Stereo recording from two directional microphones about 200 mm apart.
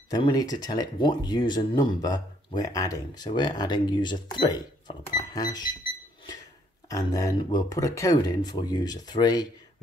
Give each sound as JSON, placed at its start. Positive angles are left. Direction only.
{"t": 0.1, "sound": "speech", "side_deg": 20}
{"t": 6.9, "sound": "speech", "side_deg": 20}